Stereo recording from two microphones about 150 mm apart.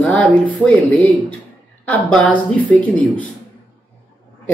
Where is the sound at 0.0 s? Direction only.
10° left (ahead or behind).